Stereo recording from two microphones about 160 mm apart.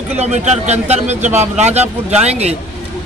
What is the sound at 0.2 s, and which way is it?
A man's voice, 45° right (ahead or behind).